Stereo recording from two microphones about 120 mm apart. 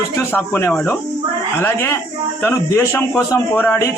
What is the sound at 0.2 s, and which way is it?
A man's voice, 20° left (ahead or behind).